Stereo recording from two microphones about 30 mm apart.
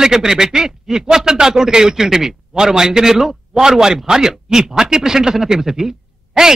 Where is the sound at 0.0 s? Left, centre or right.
Centre.